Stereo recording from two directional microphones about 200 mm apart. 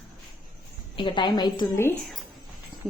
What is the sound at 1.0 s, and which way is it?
Speech, 20° left (ahead or behind).